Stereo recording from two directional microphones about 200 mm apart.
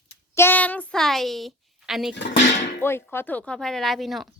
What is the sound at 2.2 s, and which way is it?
Speech, 60° left (ahead or behind).